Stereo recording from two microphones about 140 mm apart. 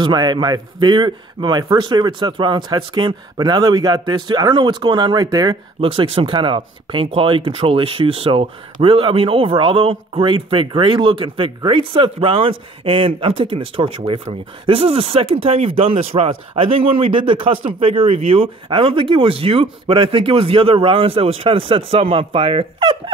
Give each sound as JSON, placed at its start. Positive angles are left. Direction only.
{"t": 0.0, "sound": "speech", "side_deg": -30}
{"t": 5.8, "sound": "speech", "side_deg": -40}